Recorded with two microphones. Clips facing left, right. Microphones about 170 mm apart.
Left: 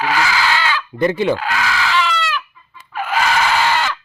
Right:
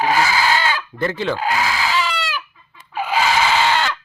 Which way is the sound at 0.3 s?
40° right (ahead or behind).